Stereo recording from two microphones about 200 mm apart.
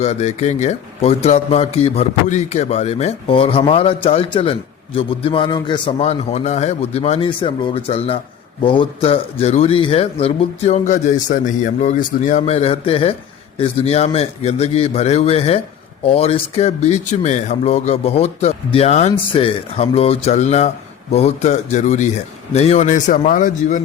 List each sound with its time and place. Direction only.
0.0 s a man's voice: 35° left (ahead or behind)